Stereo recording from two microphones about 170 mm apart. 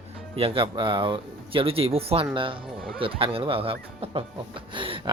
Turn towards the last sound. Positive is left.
turn(degrees=-30)  # may be behind; listen again after turning